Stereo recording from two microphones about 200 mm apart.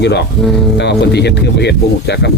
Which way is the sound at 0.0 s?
55° left (ahead or behind).